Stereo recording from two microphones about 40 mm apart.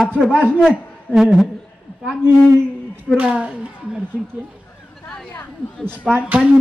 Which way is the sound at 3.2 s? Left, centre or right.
Right.